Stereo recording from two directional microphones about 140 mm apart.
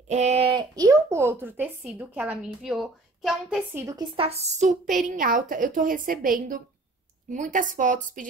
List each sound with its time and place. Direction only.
0.1 s speech: 55° right (ahead or behind)
0.5 s a sound: 35° right (ahead or behind)
0.8 s a woman's voice: 20° right (ahead or behind); by 3.6 s 5° right (ahead or behind)
3.7 s a woman's voice: 25° right (ahead or behind)
4.2 s a woman's voice: 50° right (ahead or behind); by 6.6 s 85° right
7.2 s a woman's voice: 65° right (ahead or behind)